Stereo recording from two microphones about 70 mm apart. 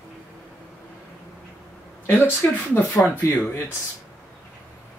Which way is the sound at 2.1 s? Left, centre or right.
Left.